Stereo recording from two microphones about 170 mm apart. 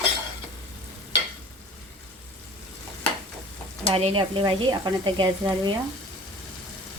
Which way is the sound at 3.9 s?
30° right (ahead or behind).